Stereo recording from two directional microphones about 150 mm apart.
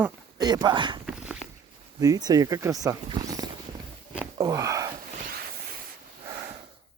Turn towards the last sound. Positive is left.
turn(degrees=-75)  # may be behind; listen again after turning